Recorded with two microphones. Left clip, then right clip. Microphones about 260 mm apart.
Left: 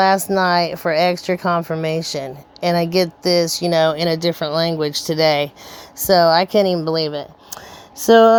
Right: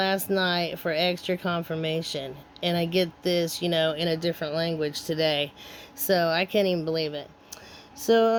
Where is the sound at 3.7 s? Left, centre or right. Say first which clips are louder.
Left 8 dB; left.